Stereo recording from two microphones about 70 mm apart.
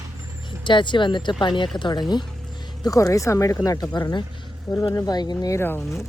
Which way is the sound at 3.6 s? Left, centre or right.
Left.